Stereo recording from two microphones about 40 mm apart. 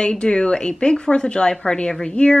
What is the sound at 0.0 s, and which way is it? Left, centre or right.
Speech, left.